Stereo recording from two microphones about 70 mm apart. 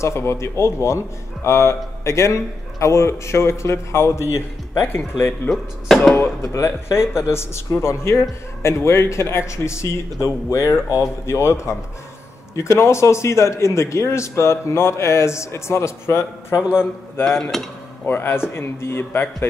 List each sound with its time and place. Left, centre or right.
0.0 s speech: left
5.5 s speech: centre
6.1 s speech: left
16.5 s a man's voice: centre
17.4 s speech: centre
18.0 s speech: left